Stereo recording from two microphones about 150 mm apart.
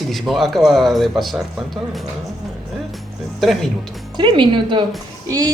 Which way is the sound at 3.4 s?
Centre (ahead or behind).